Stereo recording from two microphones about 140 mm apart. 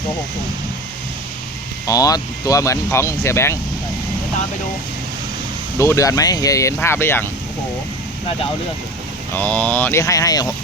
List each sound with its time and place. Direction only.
1.9 s speech: 25° left (ahead or behind)
5.8 s speech: 20° left (ahead or behind)
9.3 s speech: 10° left (ahead or behind)
10.0 s speech: 25° left (ahead or behind)